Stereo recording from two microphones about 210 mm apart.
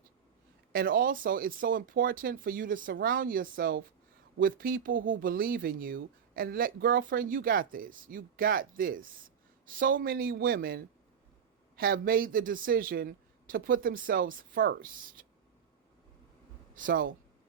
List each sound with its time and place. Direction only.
0.7 s speech: 45° right (ahead or behind)
11.8 s speech: 45° right (ahead or behind)
16.7 s speech: 40° right (ahead or behind)